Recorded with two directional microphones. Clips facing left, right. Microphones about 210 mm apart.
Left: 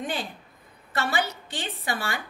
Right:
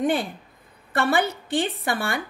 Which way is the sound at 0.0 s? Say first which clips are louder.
Right 9 dB; 55° right (ahead or behind).